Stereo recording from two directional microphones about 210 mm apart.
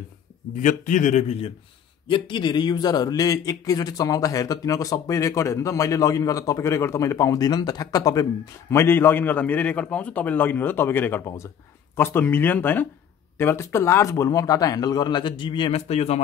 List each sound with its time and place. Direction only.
0.6 s a man's voice: 35° left (ahead or behind)